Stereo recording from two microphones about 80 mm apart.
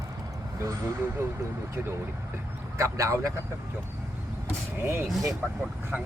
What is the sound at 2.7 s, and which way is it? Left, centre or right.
Speech, right.